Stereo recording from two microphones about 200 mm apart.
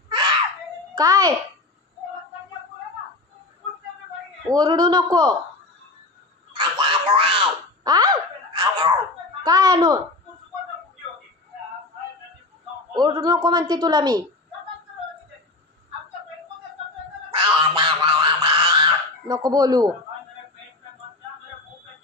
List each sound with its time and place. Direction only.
0.9 s a child's voice: 15° right (ahead or behind)
4.5 s a man's voice: 20° right (ahead or behind)
6.5 s a sound: 25° right (ahead or behind)
9.4 s a child's voice: 20° right (ahead or behind)
12.9 s a man's voice: 20° right (ahead or behind)
17.3 s quack: 25° right (ahead or behind)